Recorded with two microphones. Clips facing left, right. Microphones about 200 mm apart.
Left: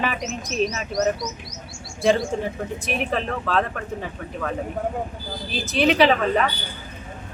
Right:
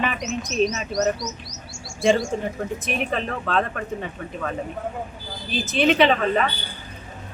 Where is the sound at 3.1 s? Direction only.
Centre (ahead or behind).